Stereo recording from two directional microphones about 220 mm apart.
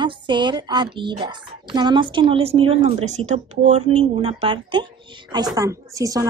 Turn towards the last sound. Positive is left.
turn(degrees=-15)  # may be behind; listen again after turning